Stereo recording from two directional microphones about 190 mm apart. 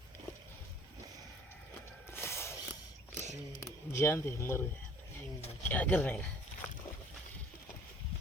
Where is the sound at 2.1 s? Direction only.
15° left (ahead or behind).